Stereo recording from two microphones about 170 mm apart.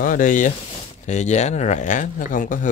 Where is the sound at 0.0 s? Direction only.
50° left (ahead or behind).